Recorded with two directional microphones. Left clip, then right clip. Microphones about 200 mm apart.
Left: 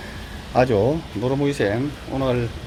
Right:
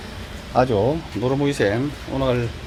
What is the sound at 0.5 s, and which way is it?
Speech, 10° left (ahead or behind).